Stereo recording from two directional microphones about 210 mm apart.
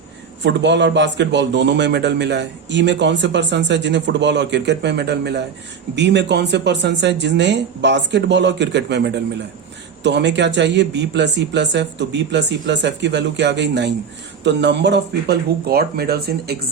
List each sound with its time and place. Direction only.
0.4 s a man's voice: 55° right (ahead or behind)